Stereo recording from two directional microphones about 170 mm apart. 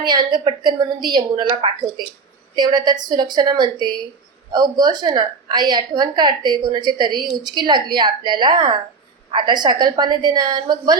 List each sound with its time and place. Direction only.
0.1 s a woman's voice: 25° right (ahead or behind)